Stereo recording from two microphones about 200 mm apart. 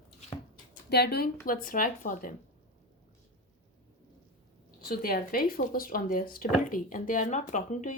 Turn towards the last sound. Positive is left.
turn(degrees=35)  # may be behind; listen again after turning